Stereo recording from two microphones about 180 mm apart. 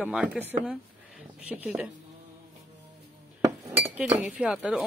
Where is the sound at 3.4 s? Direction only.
15° right (ahead or behind).